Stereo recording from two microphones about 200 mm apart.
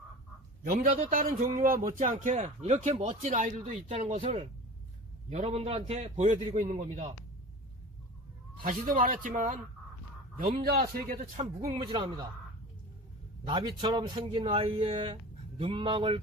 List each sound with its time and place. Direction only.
0.6 s a man's voice: 45° right (ahead or behind)
8.6 s a man's voice: 40° right (ahead or behind)
11.2 s a man's voice: 25° right (ahead or behind)
13.4 s a man's voice: 25° right (ahead or behind)